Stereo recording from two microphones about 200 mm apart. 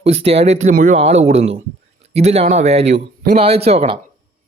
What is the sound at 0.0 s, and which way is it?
A man's voice, 30° right (ahead or behind).